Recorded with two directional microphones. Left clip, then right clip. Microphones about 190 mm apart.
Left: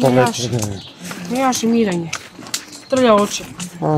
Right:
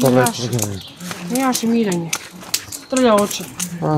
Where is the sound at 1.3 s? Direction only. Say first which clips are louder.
Left 2 dB; 55° left (ahead or behind).